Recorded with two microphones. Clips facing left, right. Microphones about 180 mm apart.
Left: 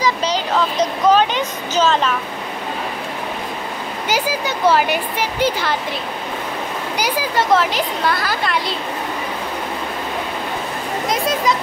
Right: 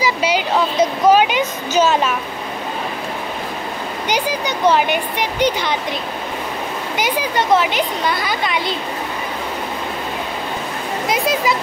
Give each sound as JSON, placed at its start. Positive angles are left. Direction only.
{"t": 0.0, "sound": "a sound", "side_deg": -10}
{"t": 4.1, "sound": "speech", "side_deg": 5}
{"t": 7.0, "sound": "speech", "side_deg": 0}
{"t": 11.1, "sound": "speech", "side_deg": -5}